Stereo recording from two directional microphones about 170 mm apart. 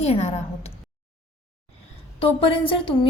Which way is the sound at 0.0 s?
40° left (ahead or behind).